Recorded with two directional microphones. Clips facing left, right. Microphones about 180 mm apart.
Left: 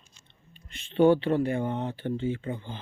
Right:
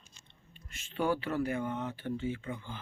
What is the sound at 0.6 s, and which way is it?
Speech, 25° left (ahead or behind).